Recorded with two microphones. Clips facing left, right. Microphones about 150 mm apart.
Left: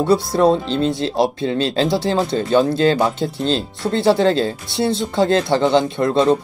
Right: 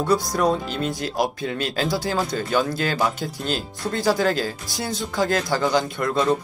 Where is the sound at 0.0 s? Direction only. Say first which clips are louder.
Left 6 dB; 25° left (ahead or behind).